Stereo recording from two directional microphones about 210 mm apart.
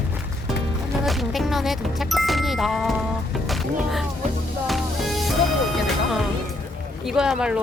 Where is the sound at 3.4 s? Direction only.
Centre (ahead or behind).